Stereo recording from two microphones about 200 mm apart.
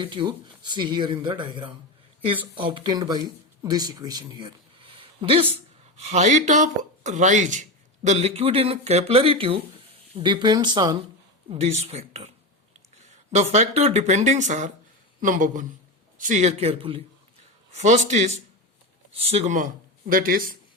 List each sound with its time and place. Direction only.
0.0 s speech: 25° right (ahead or behind)
11.5 s speech: 30° right (ahead or behind)
20.1 s speech: 45° right (ahead or behind)